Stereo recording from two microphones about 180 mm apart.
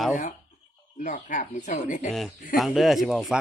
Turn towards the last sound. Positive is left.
turn(degrees=0)  # may be behind; listen again after turning